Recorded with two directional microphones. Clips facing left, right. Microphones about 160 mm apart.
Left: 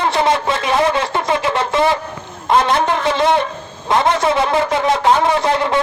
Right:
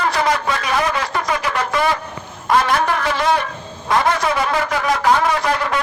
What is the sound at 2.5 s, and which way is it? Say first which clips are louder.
A man's voice: left 2 dB; 25° left (ahead or behind).